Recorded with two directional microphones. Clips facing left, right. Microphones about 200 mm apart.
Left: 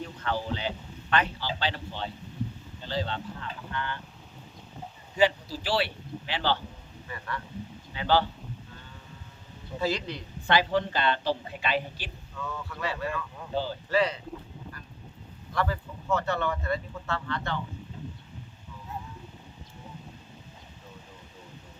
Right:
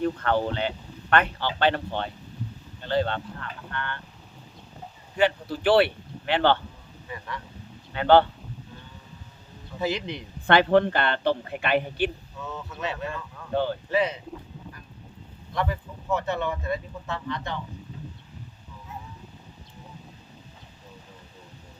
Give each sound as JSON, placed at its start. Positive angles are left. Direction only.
{"t": 0.0, "sound": "a man's voice", "side_deg": -60}
{"t": 5.1, "sound": "a man's voice", "side_deg": -60}
{"t": 7.1, "sound": "speech", "side_deg": -15}
{"t": 7.9, "sound": "a man's voice", "side_deg": -60}
{"t": 9.8, "sound": "speech", "side_deg": -20}
{"t": 10.4, "sound": "a man's voice", "side_deg": -60}
{"t": 12.4, "sound": "speech", "side_deg": -20}
{"t": 13.5, "sound": "a man's voice", "side_deg": -60}
{"t": 13.9, "sound": "speech", "side_deg": -20}
{"t": 15.5, "sound": "speech", "side_deg": -15}